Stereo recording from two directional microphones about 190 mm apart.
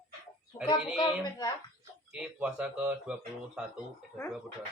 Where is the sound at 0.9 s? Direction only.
20° left (ahead or behind).